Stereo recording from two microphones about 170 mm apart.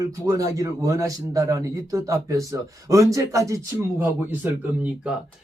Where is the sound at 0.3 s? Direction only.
20° right (ahead or behind).